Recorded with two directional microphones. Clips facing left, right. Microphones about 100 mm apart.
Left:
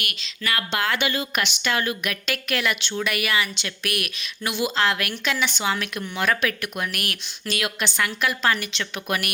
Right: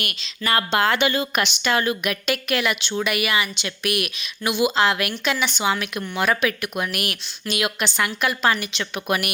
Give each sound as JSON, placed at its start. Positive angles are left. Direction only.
{"t": 0.0, "sound": "speech", "side_deg": -30}